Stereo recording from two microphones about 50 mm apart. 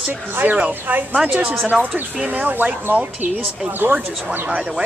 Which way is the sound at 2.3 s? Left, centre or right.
Right.